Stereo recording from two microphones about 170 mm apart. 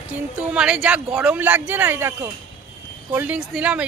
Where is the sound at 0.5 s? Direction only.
5° right (ahead or behind).